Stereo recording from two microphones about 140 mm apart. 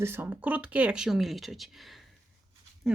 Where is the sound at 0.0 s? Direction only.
15° right (ahead or behind).